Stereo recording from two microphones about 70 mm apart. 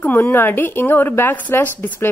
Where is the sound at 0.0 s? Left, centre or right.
Left.